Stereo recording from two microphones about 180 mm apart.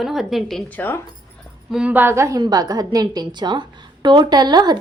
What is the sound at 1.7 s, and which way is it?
A woman's voice, 5° right (ahead or behind).